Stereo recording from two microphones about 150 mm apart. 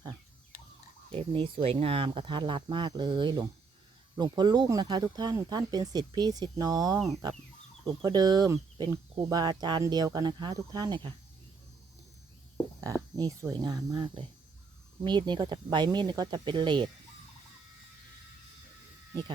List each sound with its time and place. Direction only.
1.1 s speech: 35° right (ahead or behind)
13.1 s speech: 25° right (ahead or behind)